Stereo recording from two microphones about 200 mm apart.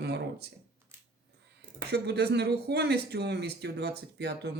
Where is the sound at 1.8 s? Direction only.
55° right (ahead or behind).